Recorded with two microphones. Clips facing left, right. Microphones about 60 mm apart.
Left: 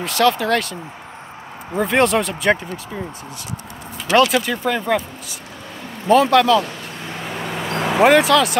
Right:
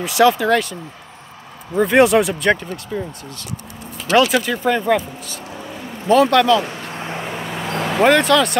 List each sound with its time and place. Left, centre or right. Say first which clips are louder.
0.0 s speech: right 3 dB; centre
1.8 s speech: right 4 dB; centre
2.5 s speech: right 1 dB; centre
4.1 s speech: even; centre
6.9 s vehicle: right 3 dB; right
7.2 s vehicle: even; centre